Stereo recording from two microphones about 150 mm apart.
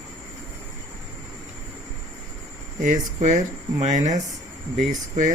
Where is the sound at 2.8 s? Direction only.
55° right (ahead or behind).